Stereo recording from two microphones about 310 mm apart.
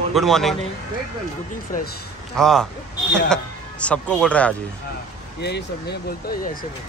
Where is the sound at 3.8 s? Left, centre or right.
Centre.